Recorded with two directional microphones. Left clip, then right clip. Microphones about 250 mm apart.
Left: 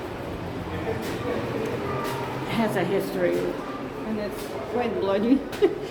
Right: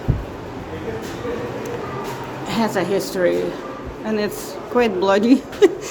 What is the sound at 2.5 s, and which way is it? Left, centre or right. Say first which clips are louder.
Speech: right 5 dB; centre.